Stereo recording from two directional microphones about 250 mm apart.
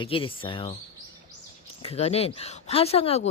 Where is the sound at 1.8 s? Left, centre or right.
Left.